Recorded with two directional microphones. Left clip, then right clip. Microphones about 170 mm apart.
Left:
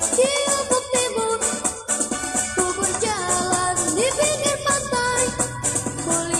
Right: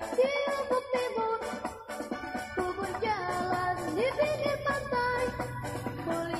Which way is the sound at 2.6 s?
20° left (ahead or behind).